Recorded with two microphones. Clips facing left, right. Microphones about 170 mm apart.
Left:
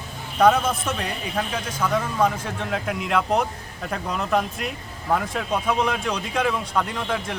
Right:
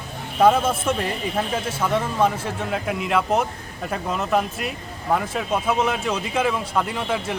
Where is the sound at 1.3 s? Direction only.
25° right (ahead or behind).